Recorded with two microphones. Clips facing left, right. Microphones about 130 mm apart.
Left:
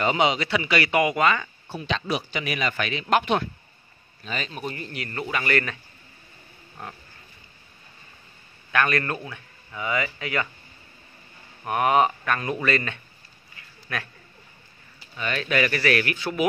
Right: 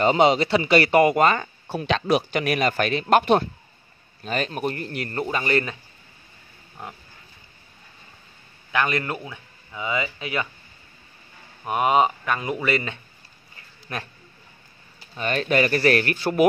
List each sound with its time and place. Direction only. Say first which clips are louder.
0.0 s speech: right 5 dB; 35° right (ahead or behind)
1.8 s speech: right 6 dB; 55° right (ahead or behind); by 5.8 s 25° right (ahead or behind)
8.7 s speech: even; 20° right (ahead or behind)
11.6 s speech: right 1 dB; 20° right (ahead or behind)
15.1 s speech: right 3 dB; 40° right (ahead or behind)